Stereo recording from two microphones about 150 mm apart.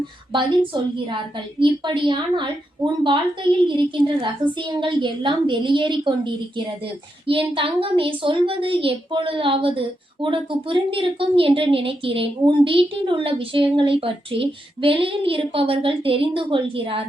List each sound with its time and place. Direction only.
0.6 s a woman's voice: 35° right (ahead or behind)